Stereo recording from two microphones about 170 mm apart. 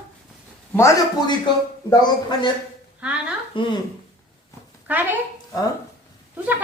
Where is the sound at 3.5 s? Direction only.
30° left (ahead or behind).